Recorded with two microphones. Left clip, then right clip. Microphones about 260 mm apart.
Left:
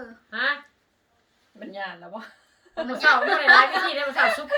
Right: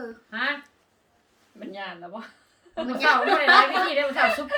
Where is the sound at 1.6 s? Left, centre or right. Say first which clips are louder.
Left 1 dB; left.